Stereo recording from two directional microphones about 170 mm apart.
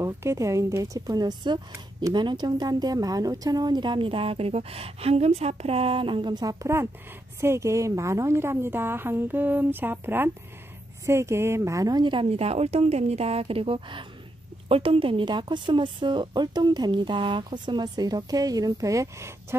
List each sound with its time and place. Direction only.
0.0 s a woman's voice: 15° right (ahead or behind)